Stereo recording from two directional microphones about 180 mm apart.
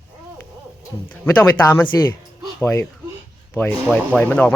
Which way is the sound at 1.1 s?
15° left (ahead or behind).